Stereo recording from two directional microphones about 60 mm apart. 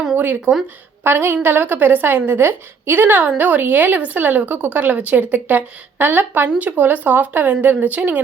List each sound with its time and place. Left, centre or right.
0.5 s a woman's voice: right